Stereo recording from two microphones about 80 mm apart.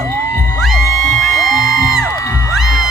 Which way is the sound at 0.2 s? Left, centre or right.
Left.